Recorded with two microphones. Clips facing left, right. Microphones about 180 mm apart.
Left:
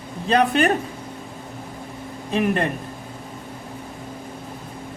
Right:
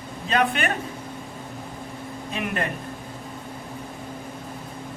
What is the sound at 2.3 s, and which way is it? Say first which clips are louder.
Speech: left 8 dB; 35° left (ahead or behind).